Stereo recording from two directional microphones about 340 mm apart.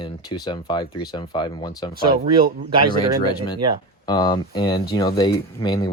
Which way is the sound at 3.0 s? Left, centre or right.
Centre.